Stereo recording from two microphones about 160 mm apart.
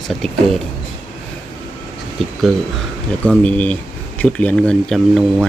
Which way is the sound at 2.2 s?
Centre (ahead or behind).